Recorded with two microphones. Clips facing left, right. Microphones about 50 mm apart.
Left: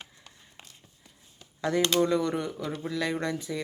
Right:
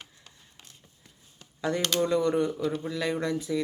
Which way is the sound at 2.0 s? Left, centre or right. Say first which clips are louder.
Right 1 dB; centre.